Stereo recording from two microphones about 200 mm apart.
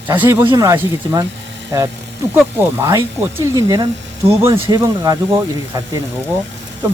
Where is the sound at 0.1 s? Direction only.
15° right (ahead or behind).